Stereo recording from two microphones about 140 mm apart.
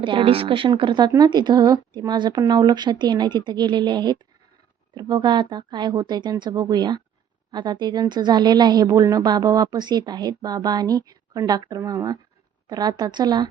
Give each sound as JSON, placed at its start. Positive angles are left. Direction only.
{"t": 0.0, "sound": "a woman's voice", "side_deg": -35}